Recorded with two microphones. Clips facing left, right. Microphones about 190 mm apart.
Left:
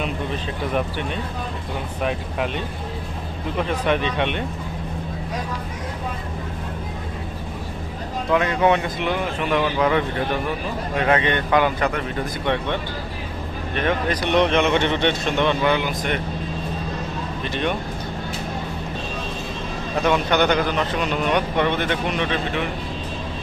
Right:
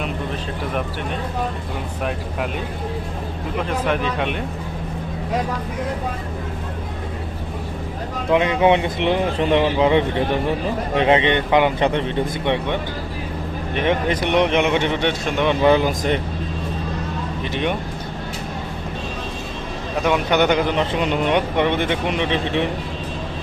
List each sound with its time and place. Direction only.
3.8 s speech: centre (ahead or behind)
8.3 s a man's voice: 20° right (ahead or behind)
15.6 s speech: 35° right (ahead or behind)
17.5 s speech: 15° right (ahead or behind)
20.1 s a man's voice: 15° right (ahead or behind)